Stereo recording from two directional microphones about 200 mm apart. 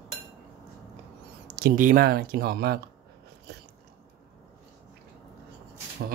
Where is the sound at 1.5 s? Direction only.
50° right (ahead or behind).